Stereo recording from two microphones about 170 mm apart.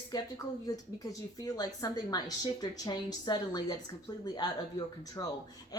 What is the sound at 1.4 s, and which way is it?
A woman's voice, 20° left (ahead or behind).